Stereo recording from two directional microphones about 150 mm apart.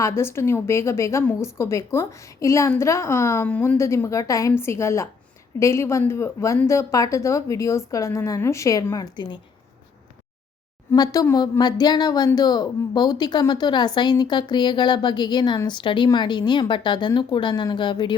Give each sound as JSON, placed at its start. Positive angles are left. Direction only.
{"t": 0.0, "sound": "a woman's voice", "side_deg": 15}
{"t": 10.9, "sound": "a woman's voice", "side_deg": 25}